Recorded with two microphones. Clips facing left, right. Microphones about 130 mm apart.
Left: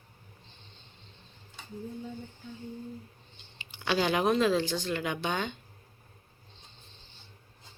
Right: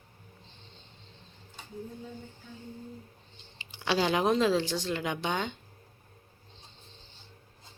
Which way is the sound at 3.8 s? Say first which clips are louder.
Even; 25° right (ahead or behind).